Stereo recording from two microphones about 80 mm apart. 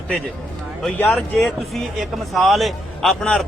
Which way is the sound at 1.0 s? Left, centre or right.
Centre.